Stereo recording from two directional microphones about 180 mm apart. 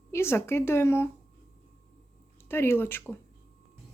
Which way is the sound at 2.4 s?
15° left (ahead or behind).